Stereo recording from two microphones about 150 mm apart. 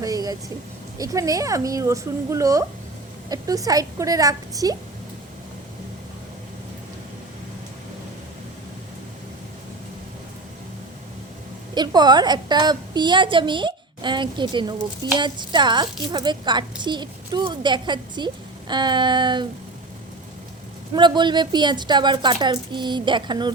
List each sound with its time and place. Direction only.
0.0 s a sound: 25° right (ahead or behind)
0.9 s a woman's voice: 25° right (ahead or behind)
11.7 s a woman's voice: 30° right (ahead or behind)
20.9 s a woman's voice: 30° right (ahead or behind)